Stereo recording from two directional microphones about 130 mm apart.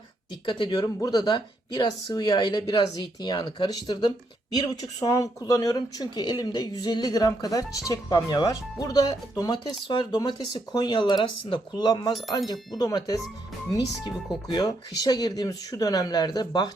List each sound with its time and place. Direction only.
0.4 s a woman's voice: 35° left (ahead or behind)
14.4 s a woman's voice: 30° left (ahead or behind)